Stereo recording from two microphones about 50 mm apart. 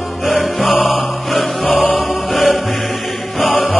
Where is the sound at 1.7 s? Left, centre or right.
Left.